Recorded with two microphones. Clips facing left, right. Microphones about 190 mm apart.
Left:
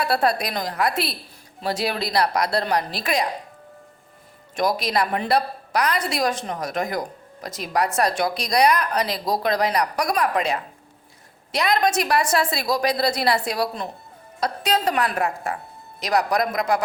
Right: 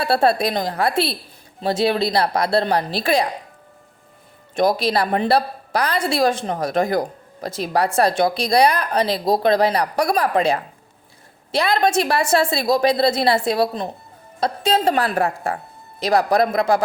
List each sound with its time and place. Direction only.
0.0 s a woman's voice: 30° right (ahead or behind)
4.5 s a woman's voice: 25° right (ahead or behind)